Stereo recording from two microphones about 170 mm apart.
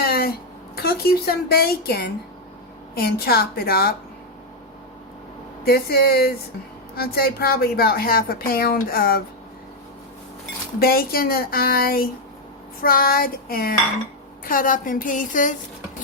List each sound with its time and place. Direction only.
0.0 s a sound: 65° left (ahead or behind)
0.8 s a woman's voice: 65° left (ahead or behind)
5.6 s a woman's voice: 65° left (ahead or behind)
10.8 s a woman's voice: 65° left (ahead or behind)